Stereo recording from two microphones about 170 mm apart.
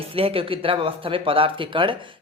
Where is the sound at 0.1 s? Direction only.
35° right (ahead or behind).